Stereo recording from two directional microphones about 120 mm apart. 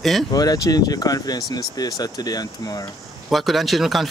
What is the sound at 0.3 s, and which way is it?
Speech, 30° left (ahead or behind).